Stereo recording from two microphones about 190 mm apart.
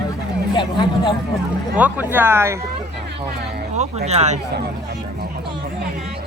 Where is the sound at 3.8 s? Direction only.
35° right (ahead or behind).